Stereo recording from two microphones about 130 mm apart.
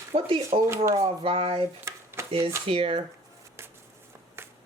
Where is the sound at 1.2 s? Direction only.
45° right (ahead or behind).